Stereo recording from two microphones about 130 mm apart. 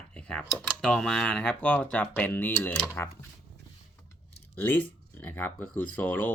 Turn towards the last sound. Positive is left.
turn(degrees=15)  # may be behind; listen again after turning